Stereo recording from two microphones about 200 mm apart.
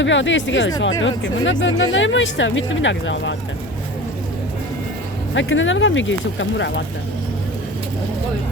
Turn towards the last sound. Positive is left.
turn(degrees=65)  # may be behind; listen again after turning